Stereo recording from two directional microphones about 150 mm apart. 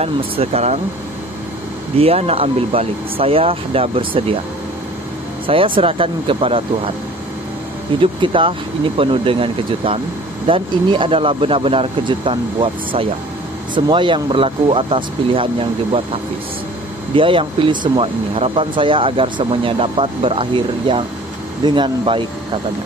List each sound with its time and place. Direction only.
0.0 s speech: 40° right (ahead or behind)
2.0 s speech: 40° right (ahead or behind)
5.5 s speech: 35° right (ahead or behind)
8.0 s speech: 35° right (ahead or behind)